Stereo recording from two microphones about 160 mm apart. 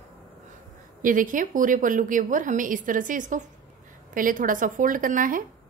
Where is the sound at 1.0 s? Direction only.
55° right (ahead or behind).